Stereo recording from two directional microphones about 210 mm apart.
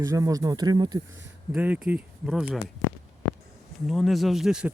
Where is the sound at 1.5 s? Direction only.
5° right (ahead or behind).